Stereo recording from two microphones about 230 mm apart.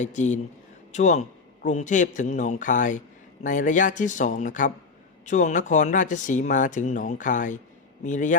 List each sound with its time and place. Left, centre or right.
0.0 s speech: left